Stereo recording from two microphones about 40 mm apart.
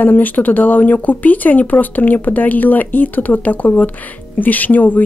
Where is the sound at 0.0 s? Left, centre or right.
Left.